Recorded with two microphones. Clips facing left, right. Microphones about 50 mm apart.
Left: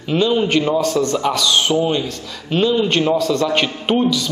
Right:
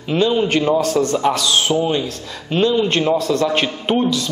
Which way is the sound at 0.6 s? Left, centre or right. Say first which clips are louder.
Right 1 dB; right.